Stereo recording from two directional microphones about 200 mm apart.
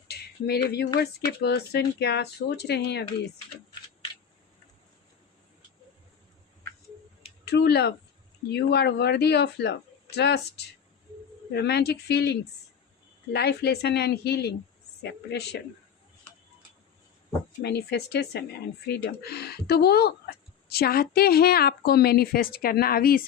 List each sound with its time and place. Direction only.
0.1 s a sound: 55° left (ahead or behind)
0.9 s speech: 55° left (ahead or behind)
7.4 s speech: 55° left (ahead or behind)
17.6 s speech: 55° left (ahead or behind)